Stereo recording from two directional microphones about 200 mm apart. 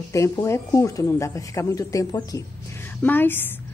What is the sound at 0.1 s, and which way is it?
A woman's voice, 15° left (ahead or behind).